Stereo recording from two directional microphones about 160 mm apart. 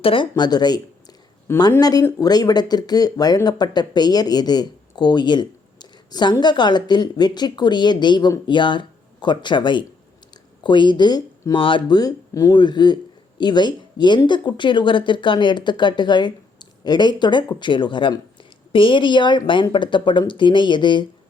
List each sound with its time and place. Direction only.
0.0 s speech: 35° left (ahead or behind)